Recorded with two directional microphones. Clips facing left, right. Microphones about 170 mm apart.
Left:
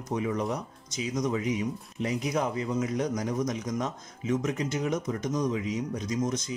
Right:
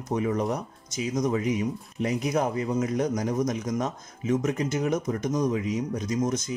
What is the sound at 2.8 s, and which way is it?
Speech, 45° right (ahead or behind).